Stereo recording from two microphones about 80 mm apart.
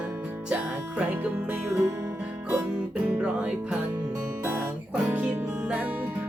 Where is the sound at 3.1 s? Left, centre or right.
Centre.